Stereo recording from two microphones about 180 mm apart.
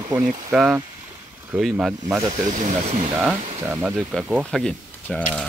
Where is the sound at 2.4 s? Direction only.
45° right (ahead or behind).